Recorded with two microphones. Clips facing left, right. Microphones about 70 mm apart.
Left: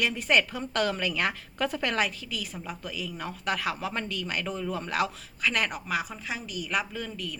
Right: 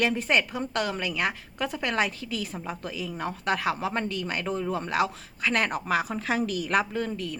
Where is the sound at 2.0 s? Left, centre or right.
Right.